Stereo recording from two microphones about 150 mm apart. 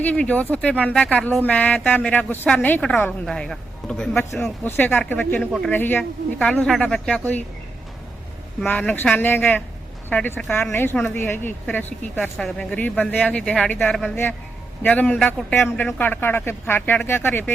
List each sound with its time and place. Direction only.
0.0 s speech: 10° left (ahead or behind)
4.1 s speech: 15° left (ahead or behind)
8.8 s speech: 10° left (ahead or behind)